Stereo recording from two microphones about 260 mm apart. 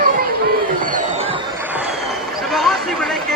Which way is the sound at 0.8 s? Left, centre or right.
Right.